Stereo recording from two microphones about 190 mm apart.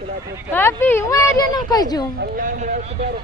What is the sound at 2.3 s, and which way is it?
Speech, 45° right (ahead or behind).